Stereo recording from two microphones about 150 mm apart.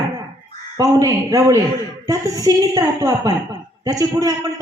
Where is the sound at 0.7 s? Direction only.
25° right (ahead or behind).